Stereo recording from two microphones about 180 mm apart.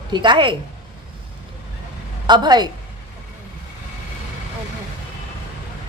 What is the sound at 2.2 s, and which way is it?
Speech, 25° right (ahead or behind).